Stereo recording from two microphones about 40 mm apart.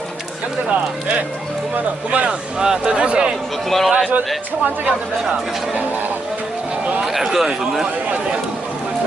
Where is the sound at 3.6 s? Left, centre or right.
Centre.